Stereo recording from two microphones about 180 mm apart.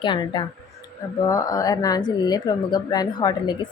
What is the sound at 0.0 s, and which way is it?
A woman's voice, 25° left (ahead or behind).